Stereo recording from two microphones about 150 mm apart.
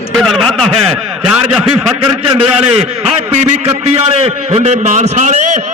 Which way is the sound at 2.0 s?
40° right (ahead or behind).